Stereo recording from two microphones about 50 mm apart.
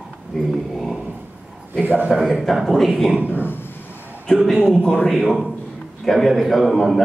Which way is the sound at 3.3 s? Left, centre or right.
Left.